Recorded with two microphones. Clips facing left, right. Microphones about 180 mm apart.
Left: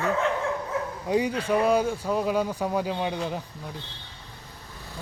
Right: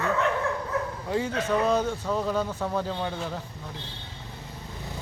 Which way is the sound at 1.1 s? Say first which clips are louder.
Left 3 dB; 15° left (ahead or behind).